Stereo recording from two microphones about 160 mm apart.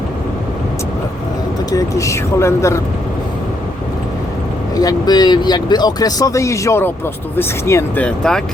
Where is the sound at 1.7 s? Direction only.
20° left (ahead or behind).